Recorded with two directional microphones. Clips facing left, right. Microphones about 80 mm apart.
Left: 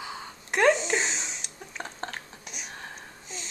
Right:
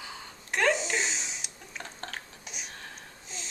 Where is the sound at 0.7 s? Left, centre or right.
Centre.